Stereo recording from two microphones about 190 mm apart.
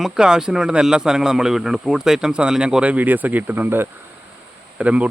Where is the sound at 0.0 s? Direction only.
5° right (ahead or behind).